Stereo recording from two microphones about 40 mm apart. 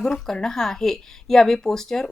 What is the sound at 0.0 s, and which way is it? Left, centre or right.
Speech, centre.